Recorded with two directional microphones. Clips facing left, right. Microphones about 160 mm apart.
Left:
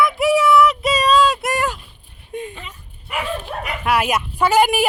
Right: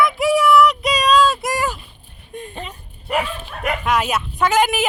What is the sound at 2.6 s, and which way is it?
Dog, 35° right (ahead or behind).